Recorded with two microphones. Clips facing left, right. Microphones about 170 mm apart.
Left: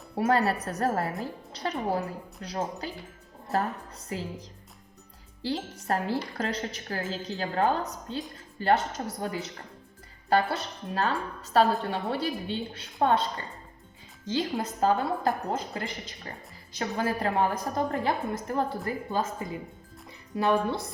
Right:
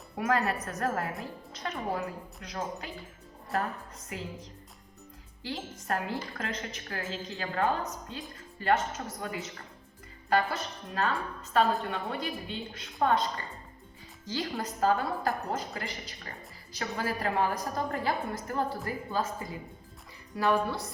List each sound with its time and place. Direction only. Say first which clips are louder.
0.2 s a woman's voice: left 4 dB; 30° left (ahead or behind)
4.1 s a woman's voice: left 5 dB; 30° left (ahead or behind)
5.9 s a woman's voice: left 4 dB; 35° left (ahead or behind)